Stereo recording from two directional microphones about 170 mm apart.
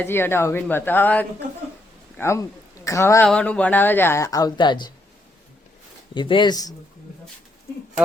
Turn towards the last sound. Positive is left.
turn(degrees=25)  # may be behind; listen again after turning